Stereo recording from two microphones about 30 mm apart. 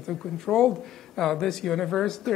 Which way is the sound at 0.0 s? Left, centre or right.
Centre.